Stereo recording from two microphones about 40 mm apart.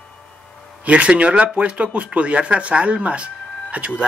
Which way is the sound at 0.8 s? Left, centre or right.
Right.